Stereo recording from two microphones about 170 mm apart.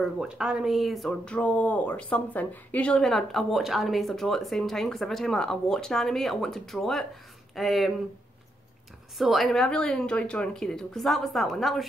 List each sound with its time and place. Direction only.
0.0 s speech: 5° right (ahead or behind)
9.2 s speech: centre (ahead or behind)